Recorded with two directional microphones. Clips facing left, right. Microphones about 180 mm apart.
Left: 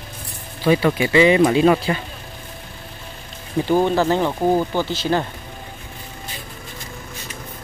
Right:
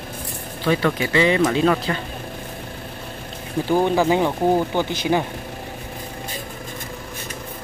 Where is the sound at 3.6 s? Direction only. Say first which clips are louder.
Even; 10° right (ahead or behind).